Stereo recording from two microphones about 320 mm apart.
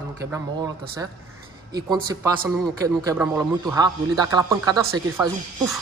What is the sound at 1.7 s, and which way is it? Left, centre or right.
A man's voice, centre.